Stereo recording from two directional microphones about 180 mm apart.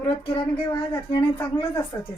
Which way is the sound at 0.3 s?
30° left (ahead or behind).